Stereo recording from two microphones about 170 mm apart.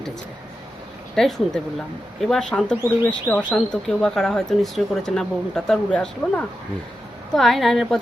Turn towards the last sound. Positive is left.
turn(degrees=0)  # may be behind; listen again after turning